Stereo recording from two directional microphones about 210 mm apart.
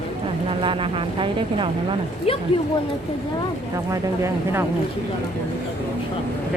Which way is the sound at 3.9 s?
10° right (ahead or behind).